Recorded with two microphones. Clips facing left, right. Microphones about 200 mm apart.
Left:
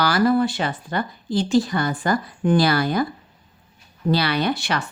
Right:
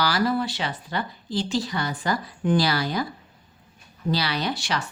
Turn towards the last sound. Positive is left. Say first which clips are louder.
# left 5 dB
turn(degrees=60)  # may be behind; listen again after turning